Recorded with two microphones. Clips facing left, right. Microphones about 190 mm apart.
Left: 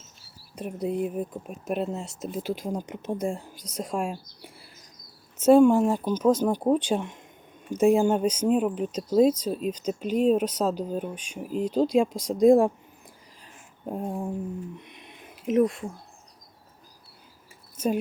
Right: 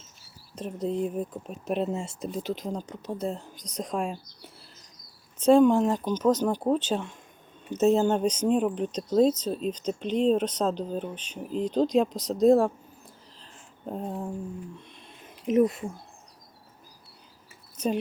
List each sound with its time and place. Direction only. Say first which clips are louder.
0.5 s speech: left 1 dB; 10° left (ahead or behind)
13.4 s a sound: left 2 dB; 10° left (ahead or behind)
15.4 s speech: even; centre (ahead or behind)
17.7 s speech: left 2 dB; 5° left (ahead or behind)